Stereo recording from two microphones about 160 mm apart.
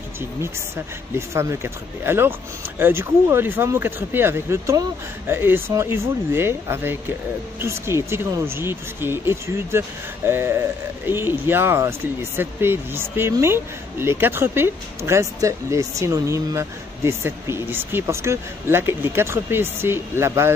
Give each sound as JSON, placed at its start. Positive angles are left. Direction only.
{"t": 1.1, "sound": "speech", "side_deg": -15}